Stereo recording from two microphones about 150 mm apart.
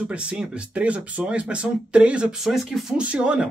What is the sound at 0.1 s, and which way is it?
Speech, 10° right (ahead or behind).